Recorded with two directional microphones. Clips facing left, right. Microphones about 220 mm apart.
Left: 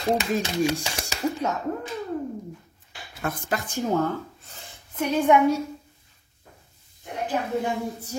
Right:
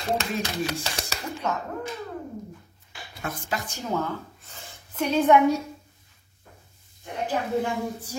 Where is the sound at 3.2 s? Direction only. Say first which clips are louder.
Left 3 dB; 55° left (ahead or behind).